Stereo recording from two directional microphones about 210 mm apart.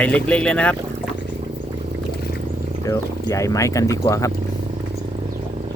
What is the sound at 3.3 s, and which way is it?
Speech, 15° left (ahead or behind).